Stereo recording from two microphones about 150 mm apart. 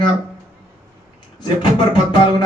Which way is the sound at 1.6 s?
30° left (ahead or behind).